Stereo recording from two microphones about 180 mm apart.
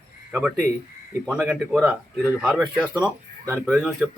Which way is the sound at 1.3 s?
10° right (ahead or behind).